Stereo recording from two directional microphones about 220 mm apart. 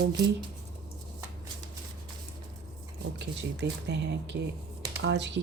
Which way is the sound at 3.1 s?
50° right (ahead or behind).